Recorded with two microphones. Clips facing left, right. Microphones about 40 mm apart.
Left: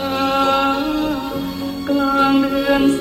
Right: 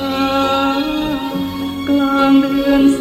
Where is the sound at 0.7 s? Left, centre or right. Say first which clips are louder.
Right 1 dB; right.